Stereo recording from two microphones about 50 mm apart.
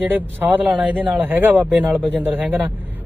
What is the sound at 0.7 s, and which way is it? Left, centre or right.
Speech, right.